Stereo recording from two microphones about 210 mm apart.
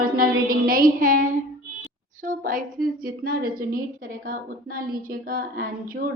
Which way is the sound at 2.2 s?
40° right (ahead or behind).